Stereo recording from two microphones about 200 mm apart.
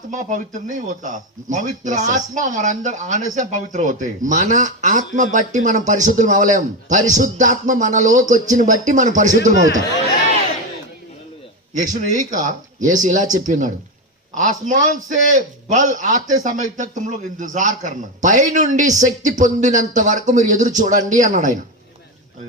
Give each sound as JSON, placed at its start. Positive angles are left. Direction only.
{"t": 0.1, "sound": "speech", "side_deg": -40}
{"t": 11.7, "sound": "speech", "side_deg": -40}